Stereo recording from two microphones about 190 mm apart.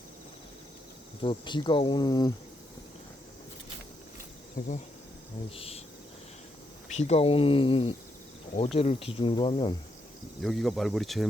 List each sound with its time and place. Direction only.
1.2 s speech: 25° left (ahead or behind)
4.6 s speech: 40° left (ahead or behind)
5.5 s speech: 30° left (ahead or behind)
6.9 s speech: 35° left (ahead or behind)
10.4 s speech: centre (ahead or behind)